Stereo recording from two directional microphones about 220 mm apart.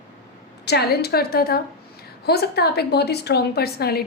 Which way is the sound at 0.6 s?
45° left (ahead or behind).